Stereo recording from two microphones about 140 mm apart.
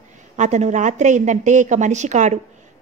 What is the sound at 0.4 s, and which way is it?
Speech, 55° right (ahead or behind).